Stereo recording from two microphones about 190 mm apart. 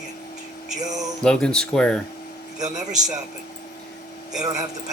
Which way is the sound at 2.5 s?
40° right (ahead or behind).